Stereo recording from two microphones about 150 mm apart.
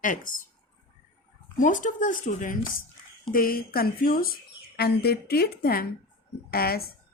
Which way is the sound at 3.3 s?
75° left (ahead or behind).